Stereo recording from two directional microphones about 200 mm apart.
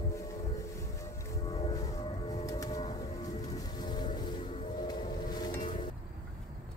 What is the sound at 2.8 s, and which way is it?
Music, 20° left (ahead or behind).